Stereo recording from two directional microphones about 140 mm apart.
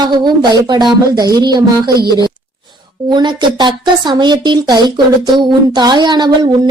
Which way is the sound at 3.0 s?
35° right (ahead or behind).